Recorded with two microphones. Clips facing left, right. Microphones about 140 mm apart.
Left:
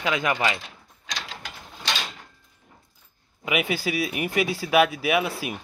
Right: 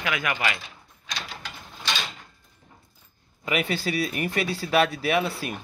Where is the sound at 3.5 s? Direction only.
10° left (ahead or behind).